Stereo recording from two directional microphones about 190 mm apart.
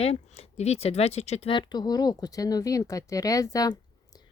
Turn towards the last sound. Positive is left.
turn(degrees=20)  # may be behind; listen again after turning